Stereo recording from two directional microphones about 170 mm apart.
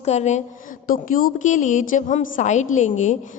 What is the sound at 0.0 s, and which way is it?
Speech, 40° left (ahead or behind).